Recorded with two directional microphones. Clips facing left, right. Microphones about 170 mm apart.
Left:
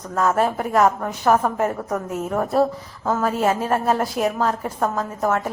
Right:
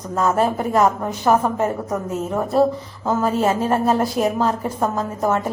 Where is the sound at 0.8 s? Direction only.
5° right (ahead or behind).